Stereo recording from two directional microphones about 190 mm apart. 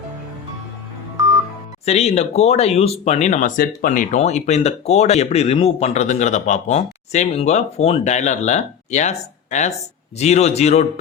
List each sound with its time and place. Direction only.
1.8 s speech: 35° left (ahead or behind)